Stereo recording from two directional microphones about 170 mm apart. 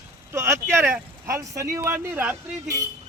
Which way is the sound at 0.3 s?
15° right (ahead or behind).